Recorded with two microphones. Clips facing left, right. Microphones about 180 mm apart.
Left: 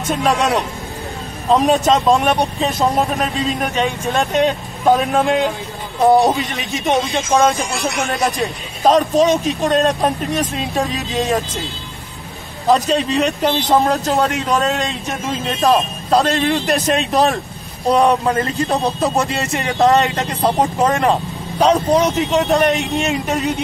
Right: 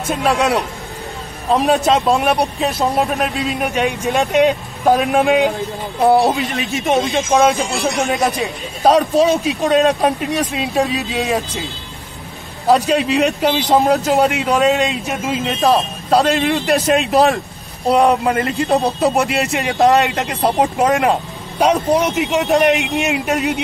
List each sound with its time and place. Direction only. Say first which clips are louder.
0.1 s speech: even; 5° right (ahead or behind)
1.7 s a man's voice: right 1 dB; 5° right (ahead or behind)
7.2 s a man's voice: right 1 dB; 15° right (ahead or behind)
7.8 s speech: right 3 dB; 35° right (ahead or behind)
8.4 s a man's voice: even; 5° right (ahead or behind)
12.6 s a man's voice: right 1 dB; 10° right (ahead or behind)